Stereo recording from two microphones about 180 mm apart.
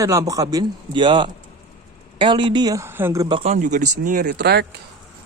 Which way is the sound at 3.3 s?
35° right (ahead or behind).